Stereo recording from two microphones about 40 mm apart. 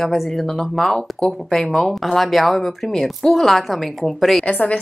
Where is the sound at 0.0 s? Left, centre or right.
Centre.